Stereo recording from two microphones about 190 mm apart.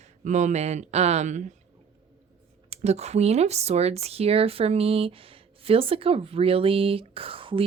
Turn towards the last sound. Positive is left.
turn(degrees=-30)  # may be behind; listen again after turning